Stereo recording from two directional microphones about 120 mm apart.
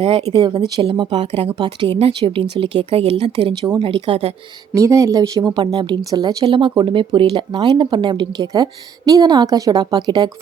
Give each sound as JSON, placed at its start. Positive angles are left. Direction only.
{"t": 0.0, "sound": "speech", "side_deg": -55}
{"t": 1.2, "sound": "speech", "side_deg": -55}
{"t": 1.5, "sound": "speech", "side_deg": -45}
{"t": 4.7, "sound": "speech", "side_deg": -25}